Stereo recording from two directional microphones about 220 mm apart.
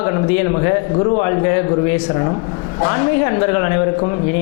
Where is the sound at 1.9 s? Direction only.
25° left (ahead or behind).